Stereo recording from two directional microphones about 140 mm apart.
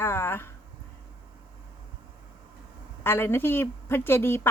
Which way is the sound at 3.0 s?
15° left (ahead or behind).